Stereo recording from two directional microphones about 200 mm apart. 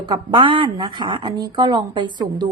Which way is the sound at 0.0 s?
20° right (ahead or behind).